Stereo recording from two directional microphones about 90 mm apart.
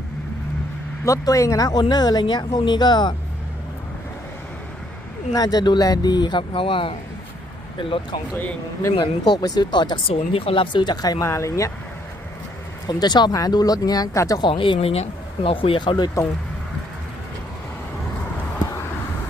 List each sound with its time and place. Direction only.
1.0 s speech: 35° left (ahead or behind); by 3.2 s 55° left (ahead or behind)
5.3 s speech: 45° left (ahead or behind); by 8.2 s 75° left (ahead or behind)
8.9 s speech: 60° left (ahead or behind)
10.0 s speech: 90° left; by 11.2 s 45° left (ahead or behind)
11.2 s speech: 35° left (ahead or behind)
12.8 s speech: 50° left (ahead or behind)
14.5 s speech: 80° left